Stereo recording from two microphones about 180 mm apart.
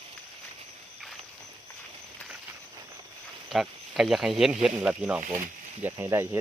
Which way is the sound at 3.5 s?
Centre (ahead or behind).